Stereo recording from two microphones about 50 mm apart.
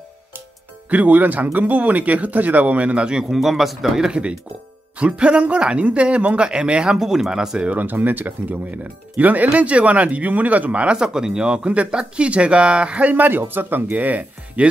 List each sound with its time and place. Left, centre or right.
0.8 s speech: right
3.3 s speech: centre
4.1 s speech: right
7.7 s speech: right